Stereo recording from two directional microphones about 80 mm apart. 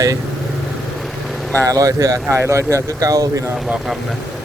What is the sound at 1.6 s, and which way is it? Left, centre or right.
Speech, right.